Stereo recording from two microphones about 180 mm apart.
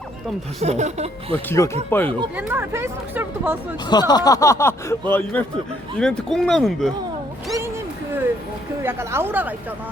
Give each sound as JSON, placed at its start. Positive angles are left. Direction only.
{"t": 0.6, "sound": "speech", "side_deg": -40}
{"t": 1.5, "sound": "speech", "side_deg": 15}
{"t": 2.3, "sound": "speech", "side_deg": -10}
{"t": 3.8, "sound": "speech", "side_deg": 25}
{"t": 8.8, "sound": "speech", "side_deg": -15}